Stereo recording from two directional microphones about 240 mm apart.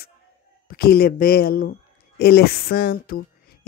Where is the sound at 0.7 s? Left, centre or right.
Left.